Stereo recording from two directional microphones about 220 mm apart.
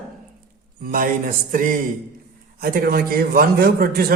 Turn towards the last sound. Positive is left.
turn(degrees=-45)  # may be behind; listen again after turning